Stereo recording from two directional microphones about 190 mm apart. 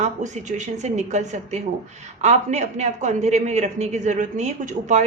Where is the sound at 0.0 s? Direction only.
40° right (ahead or behind).